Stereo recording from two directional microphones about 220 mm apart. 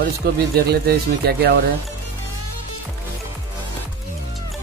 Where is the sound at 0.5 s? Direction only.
45° right (ahead or behind).